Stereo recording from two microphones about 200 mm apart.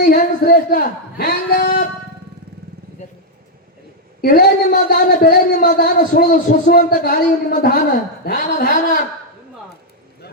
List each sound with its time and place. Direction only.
0.0 s a man's voice: 40° left (ahead or behind)
4.2 s a man's voice: 45° left (ahead or behind)